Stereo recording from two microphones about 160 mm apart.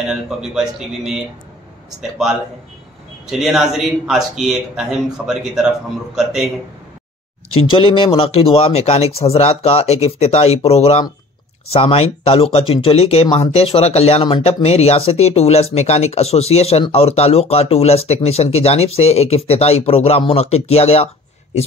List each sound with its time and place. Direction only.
0.1 s a man's voice: 5° right (ahead or behind)
7.4 s speech: 35° left (ahead or behind)